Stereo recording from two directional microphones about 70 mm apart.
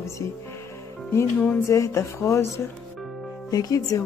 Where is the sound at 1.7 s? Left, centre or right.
Left.